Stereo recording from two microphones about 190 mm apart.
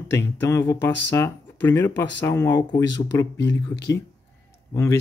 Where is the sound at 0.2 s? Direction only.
15° left (ahead or behind).